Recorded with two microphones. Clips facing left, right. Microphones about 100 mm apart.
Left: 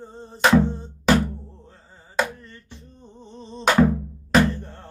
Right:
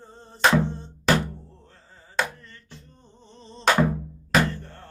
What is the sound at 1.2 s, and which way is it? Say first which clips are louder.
Music: left 6 dB; 15° left (ahead or behind).